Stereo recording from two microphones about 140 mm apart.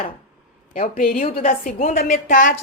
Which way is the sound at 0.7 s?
80° left.